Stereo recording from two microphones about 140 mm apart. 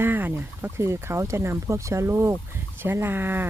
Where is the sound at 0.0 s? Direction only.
15° right (ahead or behind).